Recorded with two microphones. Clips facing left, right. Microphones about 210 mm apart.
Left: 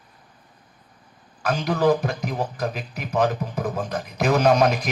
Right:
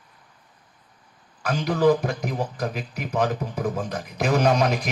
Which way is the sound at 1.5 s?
50° left (ahead or behind).